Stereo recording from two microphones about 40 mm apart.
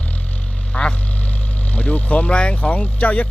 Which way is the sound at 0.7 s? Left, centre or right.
Left.